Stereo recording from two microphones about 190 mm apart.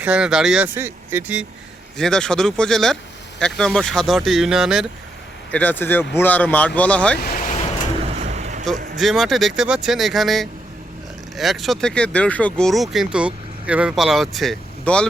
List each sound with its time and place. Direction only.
0.0 s speech: 5° right (ahead or behind)
2.0 s speech: 5° left (ahead or behind)
5.5 s speech: 10° left (ahead or behind)
7.2 s vehicle: 45° left (ahead or behind)
8.0 s vehicle: 35° right (ahead or behind)
9.0 s speech: centre (ahead or behind)